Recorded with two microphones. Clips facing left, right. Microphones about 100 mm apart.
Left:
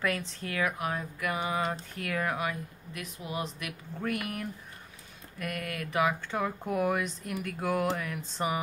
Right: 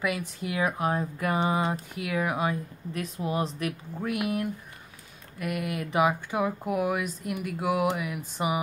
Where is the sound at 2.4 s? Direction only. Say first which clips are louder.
Right 5 dB; 30° right (ahead or behind).